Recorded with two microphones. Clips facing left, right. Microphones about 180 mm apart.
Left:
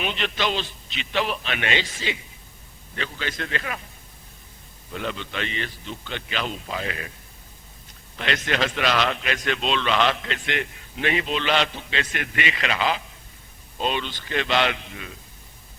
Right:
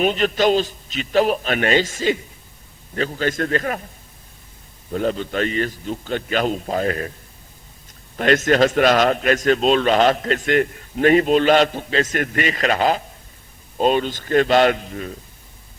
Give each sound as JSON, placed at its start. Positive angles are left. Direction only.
{"t": 0.0, "sound": "a man's voice", "side_deg": -40}
{"t": 4.9, "sound": "a man's voice", "side_deg": -40}
{"t": 8.1, "sound": "a man's voice", "side_deg": -45}